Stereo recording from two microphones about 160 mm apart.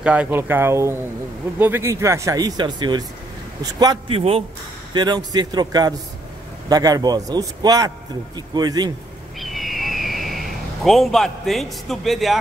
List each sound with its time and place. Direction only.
0.0 s speech: 5° right (ahead or behind); by 4.2 s 25° right (ahead or behind)
4.2 s speech: 40° right (ahead or behind)
4.9 s speech: 25° right (ahead or behind)
9.4 s a sound: centre (ahead or behind)